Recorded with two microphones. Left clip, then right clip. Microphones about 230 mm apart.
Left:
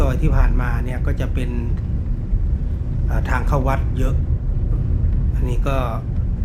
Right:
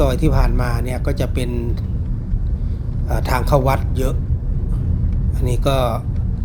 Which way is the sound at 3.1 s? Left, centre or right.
Right.